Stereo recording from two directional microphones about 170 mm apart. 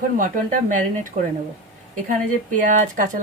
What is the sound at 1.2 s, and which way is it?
Speech, 50° right (ahead or behind).